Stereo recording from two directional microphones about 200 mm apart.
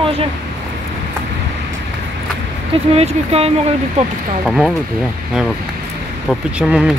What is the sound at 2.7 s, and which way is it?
Speech, 30° right (ahead or behind).